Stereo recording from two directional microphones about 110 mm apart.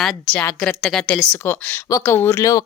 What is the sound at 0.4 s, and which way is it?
Speech, 20° left (ahead or behind).